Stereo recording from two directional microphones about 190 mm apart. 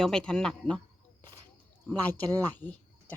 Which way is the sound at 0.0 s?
5° left (ahead or behind).